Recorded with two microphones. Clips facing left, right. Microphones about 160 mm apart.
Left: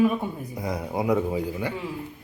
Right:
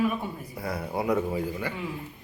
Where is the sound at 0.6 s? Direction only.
15° left (ahead or behind).